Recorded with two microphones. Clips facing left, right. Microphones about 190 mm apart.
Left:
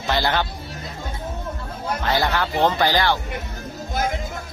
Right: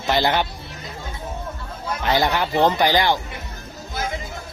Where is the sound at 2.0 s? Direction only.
20° right (ahead or behind).